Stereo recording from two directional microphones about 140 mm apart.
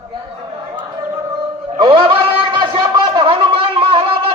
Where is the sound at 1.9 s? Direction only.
40° right (ahead or behind).